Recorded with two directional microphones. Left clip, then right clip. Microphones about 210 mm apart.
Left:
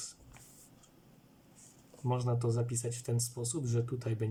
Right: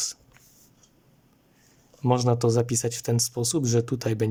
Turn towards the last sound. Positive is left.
turn(degrees=-50)  # may be behind; listen again after turning